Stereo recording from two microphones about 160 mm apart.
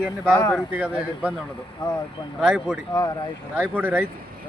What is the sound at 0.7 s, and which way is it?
Speech, 10° right (ahead or behind).